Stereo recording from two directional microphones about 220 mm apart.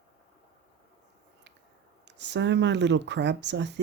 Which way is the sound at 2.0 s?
55° right (ahead or behind).